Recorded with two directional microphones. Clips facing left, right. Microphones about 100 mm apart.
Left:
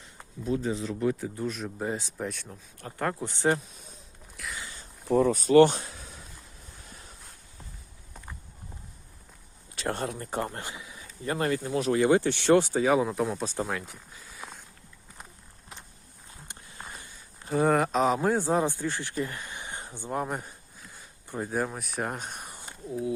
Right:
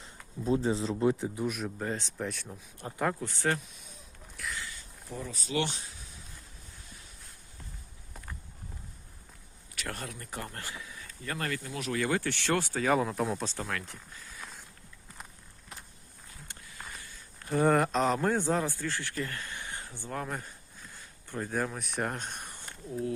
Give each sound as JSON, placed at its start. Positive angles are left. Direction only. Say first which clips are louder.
{"t": 0.4, "sound": "speech", "louder": "right 1 dB", "side_deg": -30}
{"t": 1.5, "sound": "speech", "louder": "left 2 dB", "side_deg": -5}
{"t": 1.8, "sound": "speech", "louder": "left 5 dB", "side_deg": 10}
{"t": 2.8, "sound": "speech", "louder": "right 1 dB", "side_deg": -20}
{"t": 3.2, "sound": "speech", "louder": "left 5 dB", "side_deg": 20}
{"t": 4.4, "sound": "boat", "louder": "even", "side_deg": 0}
{"t": 5.0, "sound": "speech", "louder": "left 17 dB", "side_deg": 70}
{"t": 9.7, "sound": "speech", "louder": "left 8 dB", "side_deg": 30}
{"t": 12.9, "sound": "speech", "louder": "even", "side_deg": 0}
{"t": 13.4, "sound": "speech", "louder": "left 4 dB", "side_deg": 15}
{"t": 16.5, "sound": "a sound", "louder": "left 2 dB", "side_deg": 25}
{"t": 17.1, "sound": "a sound", "louder": "left 1 dB", "side_deg": 15}
{"t": 17.5, "sound": "speech", "louder": "left 2 dB", "side_deg": 0}